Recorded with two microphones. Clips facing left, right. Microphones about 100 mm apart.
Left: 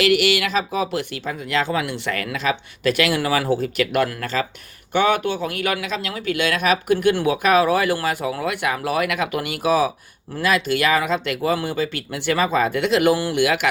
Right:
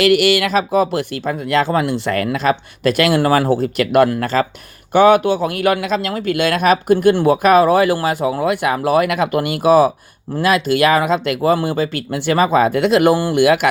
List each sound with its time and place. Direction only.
0.0 s speech: 45° right (ahead or behind)